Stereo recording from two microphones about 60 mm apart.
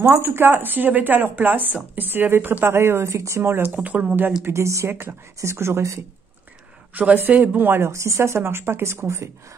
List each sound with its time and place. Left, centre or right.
0.0 s speech: right
3.8 s speech: right
4.5 s speech: right
6.9 s speech: right
7.9 s speech: right